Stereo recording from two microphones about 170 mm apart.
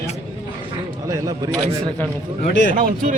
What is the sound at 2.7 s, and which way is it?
Speech, 50° right (ahead or behind).